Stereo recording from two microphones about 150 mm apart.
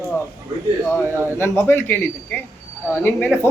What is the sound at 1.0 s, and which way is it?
Speech, 15° right (ahead or behind).